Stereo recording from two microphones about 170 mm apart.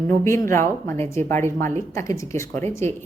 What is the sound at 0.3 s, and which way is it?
A woman's voice, 15° left (ahead or behind).